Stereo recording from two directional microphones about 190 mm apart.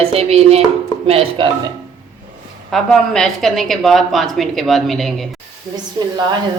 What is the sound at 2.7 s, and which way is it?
A woman's voice, centre (ahead or behind).